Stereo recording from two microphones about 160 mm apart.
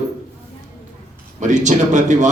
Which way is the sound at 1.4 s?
50° right (ahead or behind).